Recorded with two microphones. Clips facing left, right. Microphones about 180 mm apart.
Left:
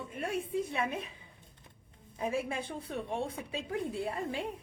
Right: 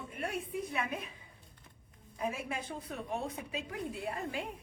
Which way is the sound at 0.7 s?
25° left (ahead or behind).